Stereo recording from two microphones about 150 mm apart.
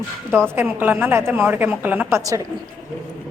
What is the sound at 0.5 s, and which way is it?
A woman's voice, 10° right (ahead or behind).